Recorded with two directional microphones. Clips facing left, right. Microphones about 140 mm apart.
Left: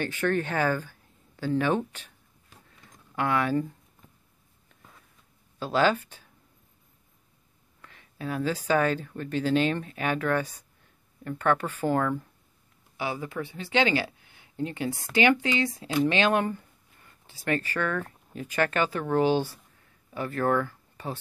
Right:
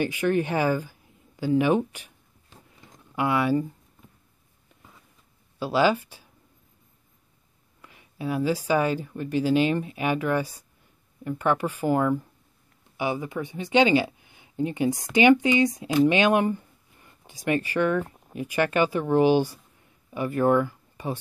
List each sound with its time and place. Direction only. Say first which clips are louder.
0.0 s speech: right 3 dB; 10° right (ahead or behind)
3.2 s speech: right 3 dB; 10° right (ahead or behind)
5.6 s speech: right 2 dB; 10° right (ahead or behind)
7.8 s speech: right 4 dB; 10° right (ahead or behind)